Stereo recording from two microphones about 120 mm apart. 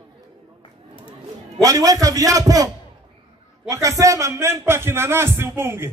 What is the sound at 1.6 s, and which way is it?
A man's voice, 30° right (ahead or behind).